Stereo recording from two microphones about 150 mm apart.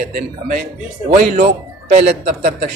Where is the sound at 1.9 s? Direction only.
50° right (ahead or behind).